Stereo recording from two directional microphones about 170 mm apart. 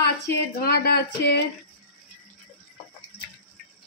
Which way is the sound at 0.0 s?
70° left (ahead or behind).